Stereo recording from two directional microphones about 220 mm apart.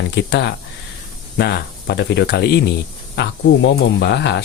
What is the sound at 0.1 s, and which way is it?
Speech, 50° left (ahead or behind).